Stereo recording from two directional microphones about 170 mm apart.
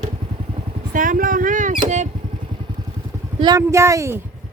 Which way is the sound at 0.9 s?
55° right (ahead or behind).